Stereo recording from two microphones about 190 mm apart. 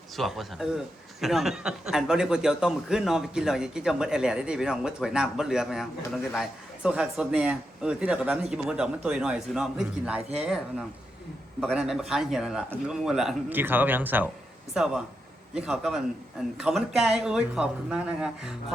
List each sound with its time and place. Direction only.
0.2 s a man's voice: centre (ahead or behind)